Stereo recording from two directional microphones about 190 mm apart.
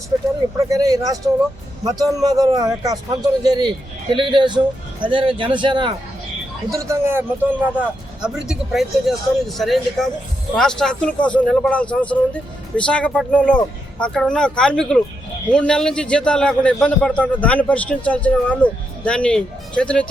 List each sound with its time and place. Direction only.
0.7 s a man's voice: 20° right (ahead or behind); by 20.1 s 5° left (ahead or behind)